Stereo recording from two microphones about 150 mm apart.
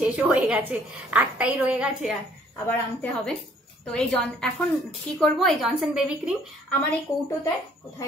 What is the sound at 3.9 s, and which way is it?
A woman's voice, 5° left (ahead or behind).